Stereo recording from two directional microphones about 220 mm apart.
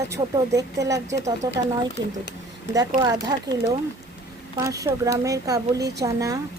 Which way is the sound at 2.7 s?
15° right (ahead or behind).